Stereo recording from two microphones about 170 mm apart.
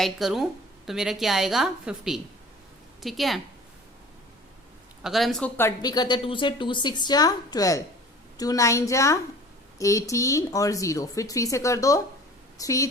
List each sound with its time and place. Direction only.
0.0 s a woman's voice: centre (ahead or behind)
5.0 s a woman's voice: centre (ahead or behind)
5.5 s a woman's voice: 20° left (ahead or behind)